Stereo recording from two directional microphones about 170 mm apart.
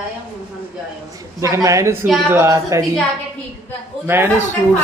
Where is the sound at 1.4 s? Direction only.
20° right (ahead or behind).